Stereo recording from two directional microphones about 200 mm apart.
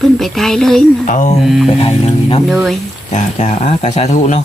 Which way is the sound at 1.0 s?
40° left (ahead or behind).